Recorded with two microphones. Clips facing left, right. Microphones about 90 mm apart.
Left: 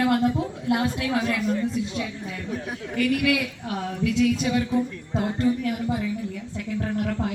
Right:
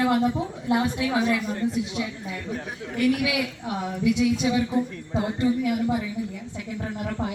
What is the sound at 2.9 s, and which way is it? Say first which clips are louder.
Speech: even; 15° right (ahead or behind).